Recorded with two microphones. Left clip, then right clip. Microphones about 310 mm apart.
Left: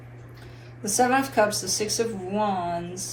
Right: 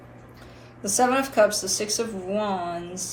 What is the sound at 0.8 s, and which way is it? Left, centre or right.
Speech, centre.